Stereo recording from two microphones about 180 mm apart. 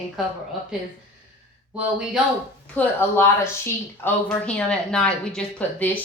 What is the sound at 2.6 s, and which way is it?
A woman's voice, 10° left (ahead or behind).